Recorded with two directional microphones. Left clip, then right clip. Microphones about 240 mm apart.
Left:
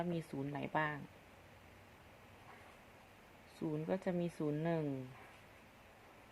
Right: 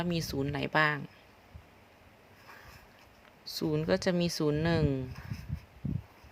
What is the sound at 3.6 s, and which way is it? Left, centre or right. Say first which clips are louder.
Speech: right 10 dB; right.